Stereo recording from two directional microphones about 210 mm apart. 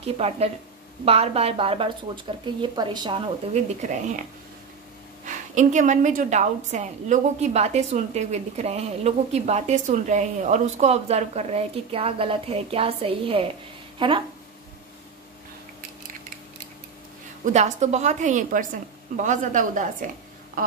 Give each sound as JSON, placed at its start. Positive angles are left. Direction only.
{"t": 0.0, "sound": "a woman's voice", "side_deg": -30}
{"t": 17.5, "sound": "a woman's voice", "side_deg": -35}